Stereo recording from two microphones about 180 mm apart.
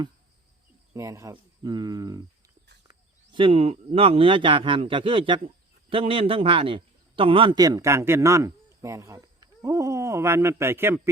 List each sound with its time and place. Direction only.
0.9 s speech: 15° right (ahead or behind)
3.3 s speech: 30° right (ahead or behind); by 11.1 s 15° right (ahead or behind)